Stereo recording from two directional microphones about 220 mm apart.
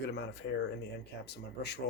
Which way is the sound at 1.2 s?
50° left (ahead or behind).